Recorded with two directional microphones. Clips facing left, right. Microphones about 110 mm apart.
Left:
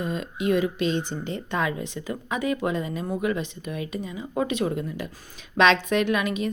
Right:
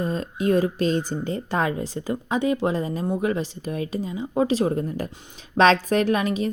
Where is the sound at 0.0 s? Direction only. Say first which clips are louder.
Right 3 dB; 35° right (ahead or behind).